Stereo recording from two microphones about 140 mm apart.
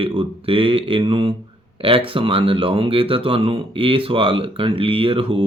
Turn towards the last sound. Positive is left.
turn(degrees=-40)  # may be behind; listen again after turning